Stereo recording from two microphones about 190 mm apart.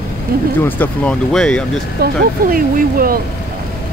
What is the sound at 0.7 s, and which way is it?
Speech, 10° left (ahead or behind).